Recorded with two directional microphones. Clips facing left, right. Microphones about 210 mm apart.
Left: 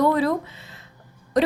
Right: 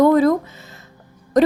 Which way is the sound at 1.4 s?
45° right (ahead or behind).